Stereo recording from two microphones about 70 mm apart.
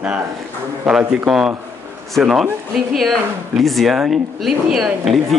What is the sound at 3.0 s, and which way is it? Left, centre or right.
Speech, centre.